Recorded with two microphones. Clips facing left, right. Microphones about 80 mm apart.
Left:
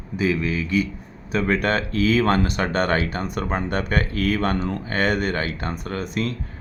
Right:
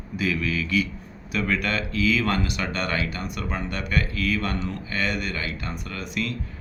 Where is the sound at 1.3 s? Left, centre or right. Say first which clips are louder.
Left 5 dB; left.